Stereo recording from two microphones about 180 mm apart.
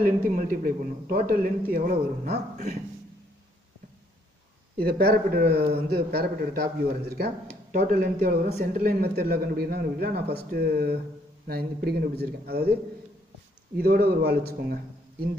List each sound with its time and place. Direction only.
0.0 s speech: 50° right (ahead or behind)
4.7 s a man's voice: 60° right (ahead or behind)
13.7 s a man's voice: 60° right (ahead or behind)